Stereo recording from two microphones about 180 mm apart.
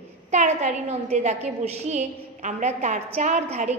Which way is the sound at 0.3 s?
40° right (ahead or behind).